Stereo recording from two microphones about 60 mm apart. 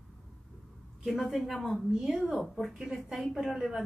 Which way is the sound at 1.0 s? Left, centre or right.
Centre.